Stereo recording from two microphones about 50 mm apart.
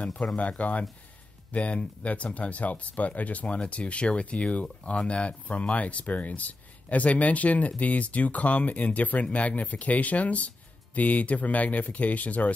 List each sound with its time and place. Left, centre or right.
0.4 s speech: left